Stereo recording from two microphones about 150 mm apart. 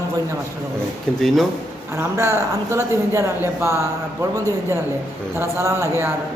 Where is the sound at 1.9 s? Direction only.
15° right (ahead or behind).